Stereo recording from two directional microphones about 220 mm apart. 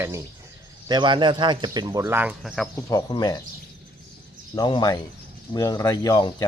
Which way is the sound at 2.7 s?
15° left (ahead or behind).